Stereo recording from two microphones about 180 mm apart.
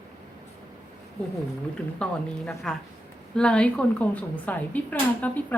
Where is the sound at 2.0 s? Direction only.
5° left (ahead or behind).